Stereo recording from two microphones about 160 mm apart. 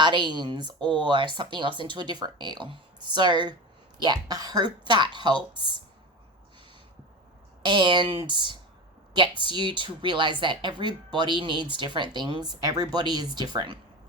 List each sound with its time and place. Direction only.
0.0 s speech: 30° right (ahead or behind)
7.6 s speech: 30° right (ahead or behind)